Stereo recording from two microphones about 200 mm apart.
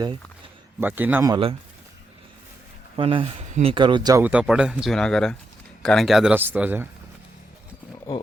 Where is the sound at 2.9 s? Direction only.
25° right (ahead or behind).